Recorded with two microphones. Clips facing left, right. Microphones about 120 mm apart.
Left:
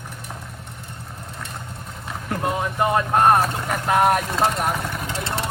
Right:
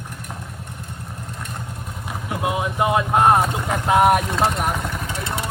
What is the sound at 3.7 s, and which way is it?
Speech, 20° right (ahead or behind).